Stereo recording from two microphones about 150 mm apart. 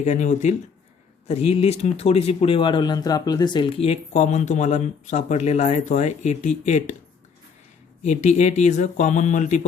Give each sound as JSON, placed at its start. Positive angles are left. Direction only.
{"t": 0.0, "sound": "speech", "side_deg": 55}
{"t": 8.0, "sound": "speech", "side_deg": 50}